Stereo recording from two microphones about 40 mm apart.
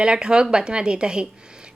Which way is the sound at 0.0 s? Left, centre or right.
Right.